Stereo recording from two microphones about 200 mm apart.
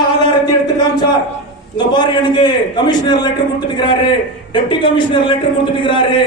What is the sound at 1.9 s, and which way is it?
A man's voice, 20° left (ahead or behind).